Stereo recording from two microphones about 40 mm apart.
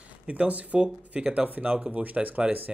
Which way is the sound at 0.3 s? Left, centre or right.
Right.